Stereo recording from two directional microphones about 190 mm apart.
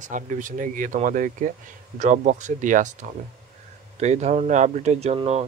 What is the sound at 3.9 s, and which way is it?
Speech, 35° right (ahead or behind).